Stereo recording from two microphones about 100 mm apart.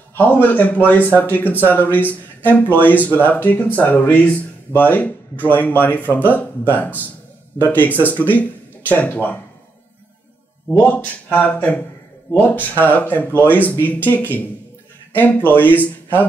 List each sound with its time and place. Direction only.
0.1 s a man's voice: 20° left (ahead or behind)
10.8 s speech: 15° left (ahead or behind)